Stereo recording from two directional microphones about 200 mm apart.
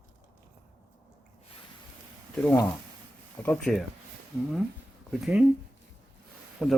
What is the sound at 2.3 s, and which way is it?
Speech, 5° left (ahead or behind).